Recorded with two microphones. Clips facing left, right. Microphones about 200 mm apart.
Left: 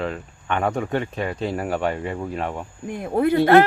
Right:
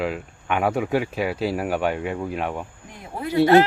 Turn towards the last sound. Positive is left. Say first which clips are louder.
# left 2 dB
turn(degrees=55)  # may be behind; listen again after turning